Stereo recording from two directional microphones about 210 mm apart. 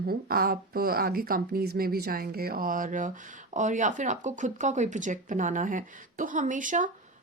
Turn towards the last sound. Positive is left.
turn(degrees=-40)  # may be behind; listen again after turning